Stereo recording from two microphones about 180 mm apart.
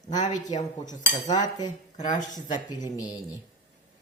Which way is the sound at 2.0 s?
45° left (ahead or behind).